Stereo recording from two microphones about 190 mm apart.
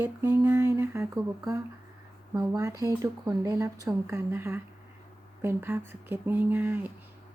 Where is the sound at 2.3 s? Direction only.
20° right (ahead or behind).